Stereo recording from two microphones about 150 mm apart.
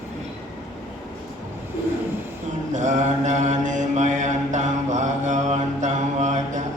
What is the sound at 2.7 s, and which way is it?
Mantra, 55° right (ahead or behind).